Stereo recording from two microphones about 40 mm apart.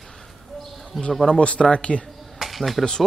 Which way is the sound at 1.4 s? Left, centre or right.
Left.